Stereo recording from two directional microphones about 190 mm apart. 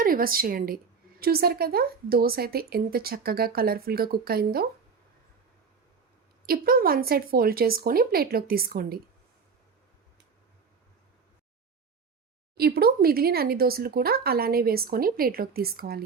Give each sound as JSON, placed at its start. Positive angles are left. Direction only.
{"t": 0.0, "sound": "a woman's voice", "side_deg": -50}
{"t": 6.4, "sound": "speech", "side_deg": -50}
{"t": 12.5, "sound": "speech", "side_deg": -55}